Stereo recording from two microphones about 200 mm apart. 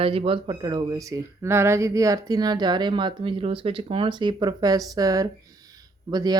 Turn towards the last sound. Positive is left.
turn(degrees=-20)  # may be behind; listen again after turning